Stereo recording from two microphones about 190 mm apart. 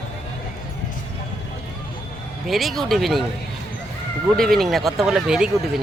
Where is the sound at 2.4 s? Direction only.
Centre (ahead or behind).